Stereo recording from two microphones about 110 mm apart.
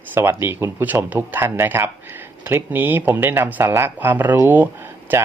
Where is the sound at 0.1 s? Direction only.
20° right (ahead or behind).